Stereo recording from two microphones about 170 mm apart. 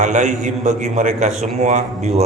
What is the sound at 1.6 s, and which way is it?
Speech, 45° right (ahead or behind).